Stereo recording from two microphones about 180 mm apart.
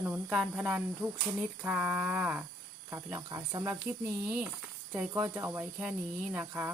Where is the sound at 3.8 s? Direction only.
10° right (ahead or behind).